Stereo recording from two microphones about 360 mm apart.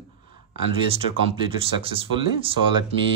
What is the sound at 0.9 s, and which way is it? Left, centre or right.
Speech, centre.